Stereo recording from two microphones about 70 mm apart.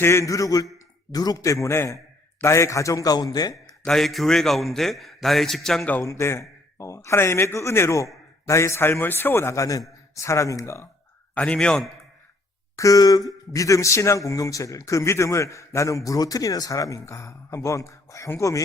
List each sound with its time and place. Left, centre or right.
0.0 s speech: left
1.1 s a man's voice: left
1.6 s a man's voice: left
3.8 s a man's voice: centre
6.0 s a man's voice: left
9.6 s a man's voice: left
10.2 s speech: left
11.3 s a man's voice: centre
12.7 s speech: left